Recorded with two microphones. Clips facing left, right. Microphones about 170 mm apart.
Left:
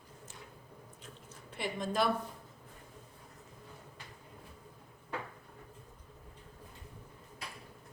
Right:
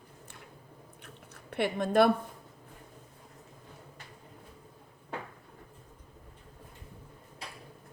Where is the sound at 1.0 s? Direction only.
65° right (ahead or behind).